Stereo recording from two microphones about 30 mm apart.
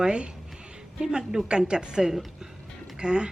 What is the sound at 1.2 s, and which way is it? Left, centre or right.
Speech, centre.